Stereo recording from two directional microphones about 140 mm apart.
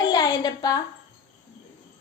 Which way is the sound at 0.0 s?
30° left (ahead or behind).